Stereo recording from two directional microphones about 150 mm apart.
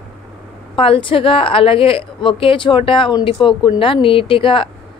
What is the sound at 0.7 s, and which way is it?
A woman's voice, 35° left (ahead or behind).